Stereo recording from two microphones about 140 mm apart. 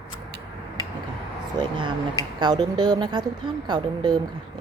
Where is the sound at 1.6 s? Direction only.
35° right (ahead or behind).